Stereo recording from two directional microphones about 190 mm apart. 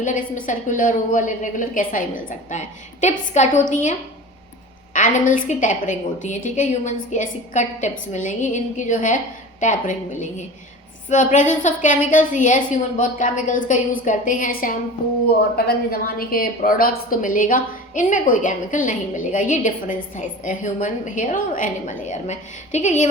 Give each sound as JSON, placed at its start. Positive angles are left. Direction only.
{"t": 0.0, "sound": "a woman's voice", "side_deg": 45}
{"t": 4.9, "sound": "a woman's voice", "side_deg": 45}